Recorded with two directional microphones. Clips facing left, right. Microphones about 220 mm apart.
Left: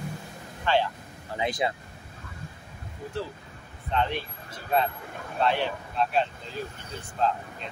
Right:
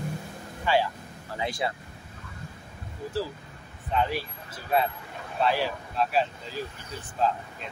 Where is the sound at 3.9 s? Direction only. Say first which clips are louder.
Even; 5° right (ahead or behind).